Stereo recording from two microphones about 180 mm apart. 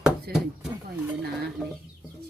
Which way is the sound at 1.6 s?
5° right (ahead or behind).